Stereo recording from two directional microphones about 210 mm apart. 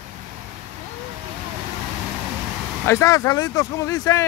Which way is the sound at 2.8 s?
15° left (ahead or behind).